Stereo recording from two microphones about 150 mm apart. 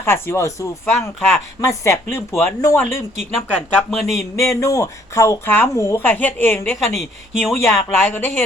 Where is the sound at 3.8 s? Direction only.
Centre (ahead or behind).